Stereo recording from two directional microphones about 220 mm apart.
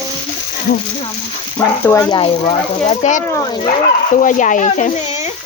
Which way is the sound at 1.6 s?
10° left (ahead or behind).